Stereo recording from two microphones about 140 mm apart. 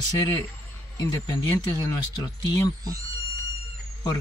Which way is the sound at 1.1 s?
25° left (ahead or behind).